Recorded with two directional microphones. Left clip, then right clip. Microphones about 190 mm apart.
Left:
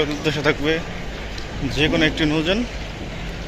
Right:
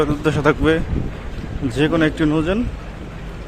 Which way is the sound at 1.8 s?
25° right (ahead or behind).